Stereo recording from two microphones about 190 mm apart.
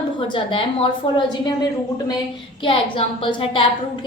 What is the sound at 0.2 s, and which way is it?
Speech, 25° left (ahead or behind).